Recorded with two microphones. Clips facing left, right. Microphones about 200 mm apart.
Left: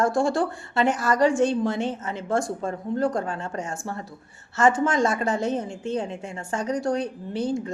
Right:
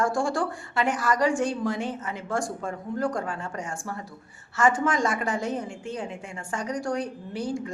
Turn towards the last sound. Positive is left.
turn(degrees=25)  # may be behind; listen again after turning